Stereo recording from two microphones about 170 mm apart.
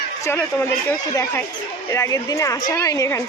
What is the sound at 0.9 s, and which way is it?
A woman's voice, 15° left (ahead or behind).